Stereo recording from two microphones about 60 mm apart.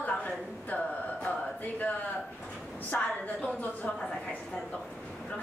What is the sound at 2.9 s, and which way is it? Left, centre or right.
Speech, left.